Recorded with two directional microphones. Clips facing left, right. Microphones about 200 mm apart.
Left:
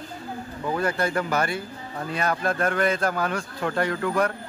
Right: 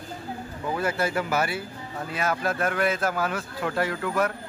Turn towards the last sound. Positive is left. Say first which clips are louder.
# left 2 dB
turn(degrees=-5)  # may be behind; listen again after turning